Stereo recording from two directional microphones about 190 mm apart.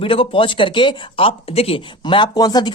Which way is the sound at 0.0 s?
30° left (ahead or behind).